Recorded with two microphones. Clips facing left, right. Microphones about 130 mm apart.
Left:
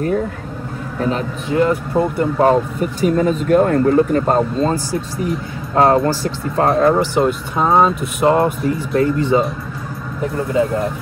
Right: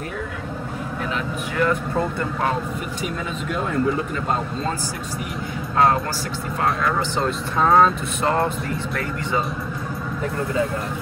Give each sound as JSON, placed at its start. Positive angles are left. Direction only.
{"t": 1.0, "sound": "speech", "side_deg": 35}
{"t": 2.5, "sound": "speech", "side_deg": 40}
{"t": 7.0, "sound": "speech", "side_deg": 15}